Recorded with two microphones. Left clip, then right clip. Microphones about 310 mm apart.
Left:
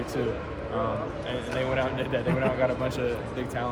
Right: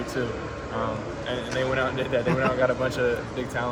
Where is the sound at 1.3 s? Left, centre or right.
Centre.